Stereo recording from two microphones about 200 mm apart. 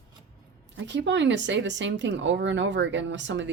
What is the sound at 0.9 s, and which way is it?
Speech, 65° right (ahead or behind).